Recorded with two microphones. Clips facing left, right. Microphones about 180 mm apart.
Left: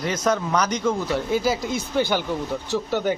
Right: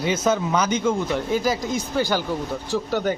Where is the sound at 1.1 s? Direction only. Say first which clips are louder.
Even; 10° left (ahead or behind).